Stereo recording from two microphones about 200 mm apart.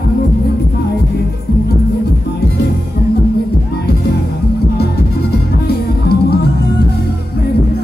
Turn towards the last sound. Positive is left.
turn(degrees=55)  # may be behind; listen again after turning